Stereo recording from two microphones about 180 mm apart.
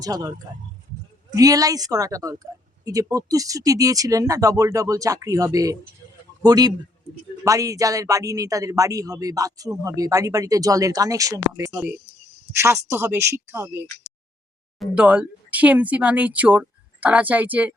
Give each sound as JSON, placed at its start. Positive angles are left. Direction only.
{"t": 0.0, "sound": "a woman's voice", "side_deg": -20}